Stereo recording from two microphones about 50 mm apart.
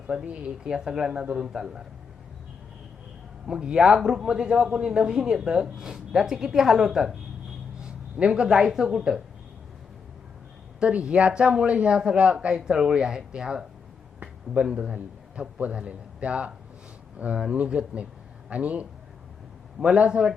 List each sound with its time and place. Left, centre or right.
0.1 s a man's voice: centre
3.4 s a man's voice: centre
10.8 s a man's voice: centre